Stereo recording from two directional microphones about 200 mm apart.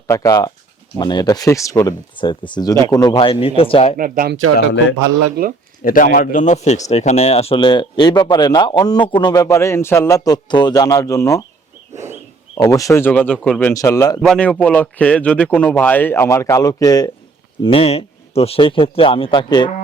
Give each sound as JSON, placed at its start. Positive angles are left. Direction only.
{"t": 0.1, "sound": "speech", "side_deg": 15}
{"t": 3.9, "sound": "speech", "side_deg": -45}
{"t": 4.5, "sound": "a man's voice", "side_deg": 65}
{"t": 5.4, "sound": "speech", "side_deg": -50}
{"t": 5.8, "sound": "speech", "side_deg": 45}
{"t": 11.9, "sound": "a sound", "side_deg": -10}
{"t": 12.5, "sound": "speech", "side_deg": 15}
{"t": 14.2, "sound": "speech", "side_deg": 5}